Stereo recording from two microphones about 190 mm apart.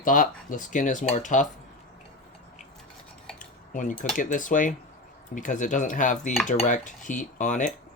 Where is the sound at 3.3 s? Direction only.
40° left (ahead or behind).